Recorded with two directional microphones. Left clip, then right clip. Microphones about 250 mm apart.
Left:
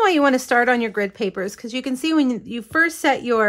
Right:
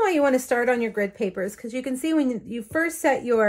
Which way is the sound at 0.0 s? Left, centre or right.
Centre.